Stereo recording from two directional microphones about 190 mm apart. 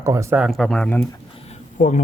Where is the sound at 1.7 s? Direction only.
40° left (ahead or behind).